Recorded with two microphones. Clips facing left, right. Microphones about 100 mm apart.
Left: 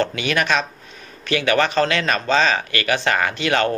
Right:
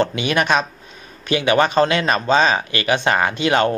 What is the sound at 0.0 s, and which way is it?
Speech, 20° right (ahead or behind).